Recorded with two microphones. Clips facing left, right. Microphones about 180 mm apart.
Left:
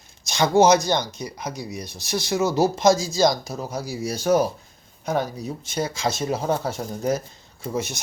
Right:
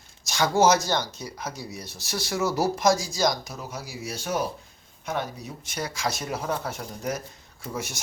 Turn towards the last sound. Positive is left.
turn(degrees=20)  # may be behind; listen again after turning